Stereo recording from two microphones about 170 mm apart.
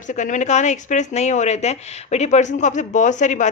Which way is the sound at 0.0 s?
45° left (ahead or behind).